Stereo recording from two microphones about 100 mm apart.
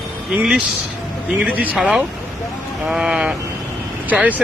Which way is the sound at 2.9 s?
5° right (ahead or behind).